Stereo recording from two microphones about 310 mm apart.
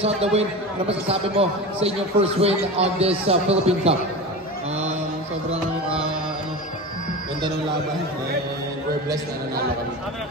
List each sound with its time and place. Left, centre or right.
0.0 s a man's voice: centre
5.5 s music: centre